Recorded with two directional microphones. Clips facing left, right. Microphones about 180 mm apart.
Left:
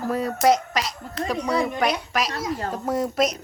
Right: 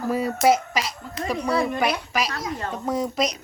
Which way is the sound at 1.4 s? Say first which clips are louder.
Right 1 dB; 20° left (ahead or behind).